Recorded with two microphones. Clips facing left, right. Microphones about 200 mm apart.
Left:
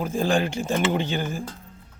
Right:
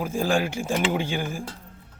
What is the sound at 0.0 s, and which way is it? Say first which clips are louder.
Speech: left 1 dB; 10° right (ahead or behind).